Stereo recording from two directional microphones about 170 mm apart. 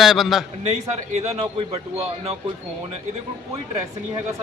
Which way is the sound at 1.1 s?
40° right (ahead or behind).